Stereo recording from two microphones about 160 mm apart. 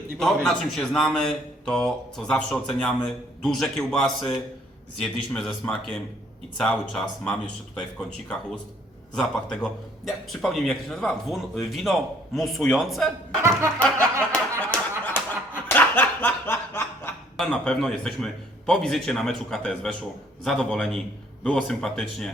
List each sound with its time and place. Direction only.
0.2 s a man's voice: centre (ahead or behind)
13.4 s snicker: 15° right (ahead or behind)
14.0 s music: 20° right (ahead or behind)
14.6 s a sound: 10° left (ahead or behind)
15.7 s snicker: 10° left (ahead or behind)
17.3 s a man's voice: 5° left (ahead or behind)